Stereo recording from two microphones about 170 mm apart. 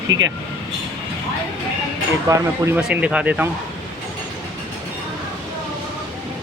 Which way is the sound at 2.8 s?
5° right (ahead or behind).